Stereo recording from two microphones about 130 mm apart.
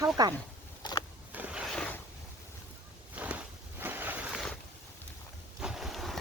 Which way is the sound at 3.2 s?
15° right (ahead or behind).